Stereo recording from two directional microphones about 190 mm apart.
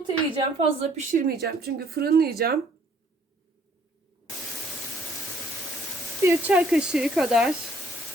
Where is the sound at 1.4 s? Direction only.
55° right (ahead or behind).